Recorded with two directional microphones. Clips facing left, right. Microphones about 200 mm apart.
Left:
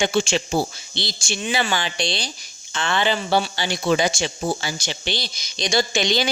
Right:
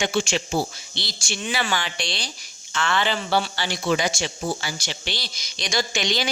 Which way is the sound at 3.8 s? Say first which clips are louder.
Left 3 dB; 30° left (ahead or behind).